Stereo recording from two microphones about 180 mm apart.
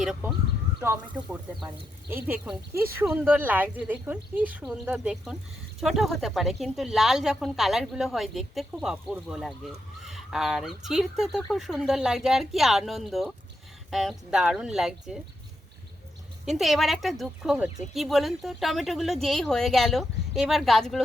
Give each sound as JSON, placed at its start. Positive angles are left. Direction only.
{"t": 0.0, "sound": "speech", "side_deg": 0}
{"t": 16.5, "sound": "speech", "side_deg": 0}